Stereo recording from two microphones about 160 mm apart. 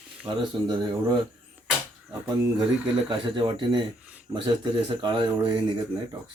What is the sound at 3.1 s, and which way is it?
Speech, 30° right (ahead or behind).